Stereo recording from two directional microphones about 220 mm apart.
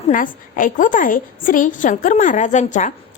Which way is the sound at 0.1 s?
40° left (ahead or behind).